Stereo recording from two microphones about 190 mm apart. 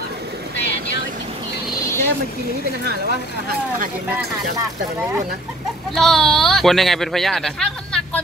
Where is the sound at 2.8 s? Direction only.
60° right (ahead or behind).